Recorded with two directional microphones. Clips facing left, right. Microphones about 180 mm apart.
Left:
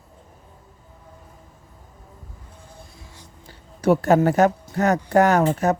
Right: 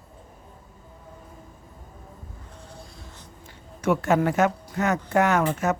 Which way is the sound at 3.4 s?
35° left (ahead or behind).